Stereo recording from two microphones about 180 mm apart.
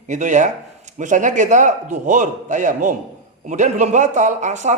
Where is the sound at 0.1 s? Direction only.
45° right (ahead or behind).